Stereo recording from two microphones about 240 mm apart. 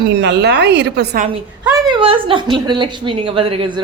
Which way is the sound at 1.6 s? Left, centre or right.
Centre.